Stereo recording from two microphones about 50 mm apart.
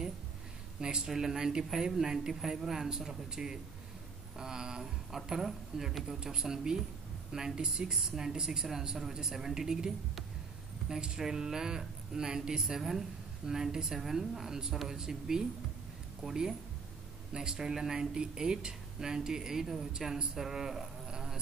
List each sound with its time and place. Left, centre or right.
0.7 s speech: centre
21.1 s insect: centre